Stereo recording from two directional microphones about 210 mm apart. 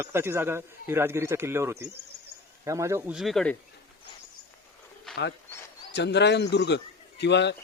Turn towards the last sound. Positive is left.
turn(degrees=55)  # may be behind; listen again after turning